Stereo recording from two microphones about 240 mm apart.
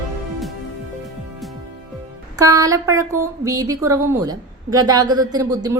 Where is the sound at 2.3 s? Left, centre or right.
Centre.